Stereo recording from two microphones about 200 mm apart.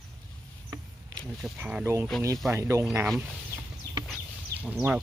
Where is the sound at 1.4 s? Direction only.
5° right (ahead or behind).